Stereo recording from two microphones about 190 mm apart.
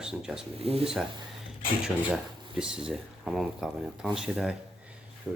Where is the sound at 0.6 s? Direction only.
30° right (ahead or behind).